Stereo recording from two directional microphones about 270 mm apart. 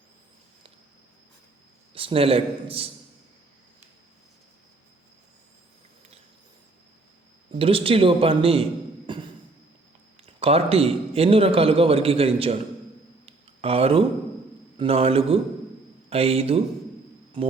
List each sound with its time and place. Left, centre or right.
2.0 s a man's voice: right
7.5 s a man's voice: right
9.1 s a sound: centre
10.4 s a man's voice: right
13.2 s a sound: right
14.8 s a man's voice: right